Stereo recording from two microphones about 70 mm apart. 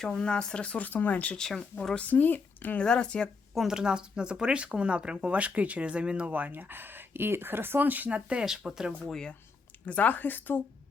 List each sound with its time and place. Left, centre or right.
0.0 s speech: centre
1.4 s speech: centre
2.0 s speech: left
2.7 s speech: centre
3.5 s speech: centre
8.4 s speech: centre
9.8 s speech: centre